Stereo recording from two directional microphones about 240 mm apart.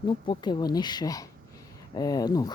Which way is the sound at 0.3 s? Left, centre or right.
Centre.